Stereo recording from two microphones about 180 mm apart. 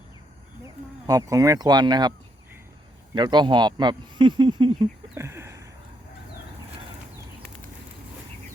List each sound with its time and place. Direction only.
1.0 s speech: 20° right (ahead or behind)
3.2 s speech: 25° right (ahead or behind)